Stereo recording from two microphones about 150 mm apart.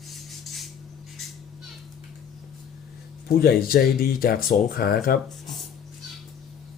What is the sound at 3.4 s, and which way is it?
Speech, 85° left.